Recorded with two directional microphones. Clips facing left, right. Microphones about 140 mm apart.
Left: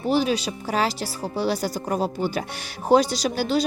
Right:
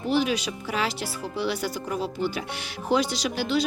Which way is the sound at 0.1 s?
35° left (ahead or behind).